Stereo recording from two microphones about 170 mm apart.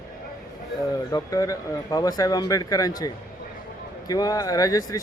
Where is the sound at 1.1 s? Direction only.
20° left (ahead or behind).